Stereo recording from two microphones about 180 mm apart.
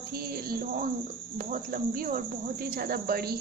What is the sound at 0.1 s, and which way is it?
Music, 55° right (ahead or behind).